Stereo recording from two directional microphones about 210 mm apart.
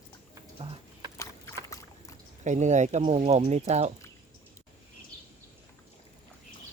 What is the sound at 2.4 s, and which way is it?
Speech, 35° right (ahead or behind).